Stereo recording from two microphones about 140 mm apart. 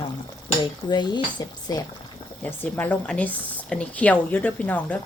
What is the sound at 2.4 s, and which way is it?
A woman's voice, 10° left (ahead or behind).